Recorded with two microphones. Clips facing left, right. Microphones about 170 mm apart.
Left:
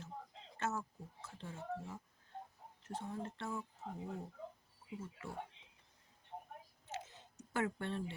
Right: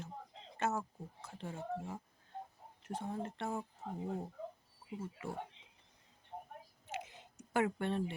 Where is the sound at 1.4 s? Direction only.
60° right (ahead or behind).